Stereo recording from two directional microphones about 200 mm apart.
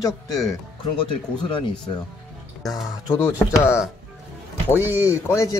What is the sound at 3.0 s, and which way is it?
Speech, 15° left (ahead or behind).